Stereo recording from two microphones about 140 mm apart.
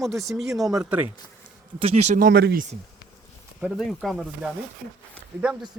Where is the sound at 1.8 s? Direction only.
50° right (ahead or behind).